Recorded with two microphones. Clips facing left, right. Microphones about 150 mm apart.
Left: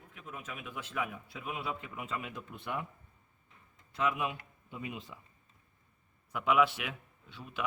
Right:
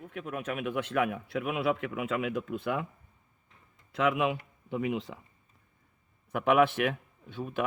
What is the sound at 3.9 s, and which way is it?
Speech, 90° right.